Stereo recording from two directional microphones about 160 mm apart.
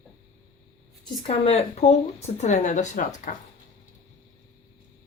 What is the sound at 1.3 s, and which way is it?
Speech, 40° left (ahead or behind).